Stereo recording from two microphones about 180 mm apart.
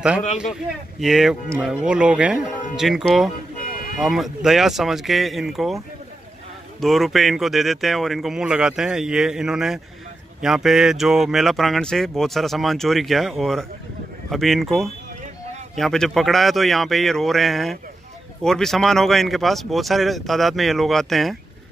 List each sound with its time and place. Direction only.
0.4 s speech: centre (ahead or behind)
3.5 s vehicle: 50° left (ahead or behind)
4.0 s speech: centre (ahead or behind)
6.8 s speech: centre (ahead or behind)